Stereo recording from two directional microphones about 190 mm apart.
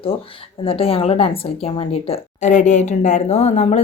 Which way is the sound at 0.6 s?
30° left (ahead or behind).